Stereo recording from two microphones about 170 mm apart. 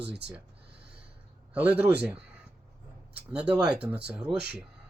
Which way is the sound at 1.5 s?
10° right (ahead or behind).